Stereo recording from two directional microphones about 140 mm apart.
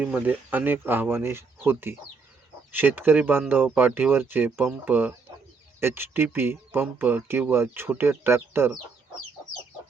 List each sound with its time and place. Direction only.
0.0 s speech: 10° right (ahead or behind)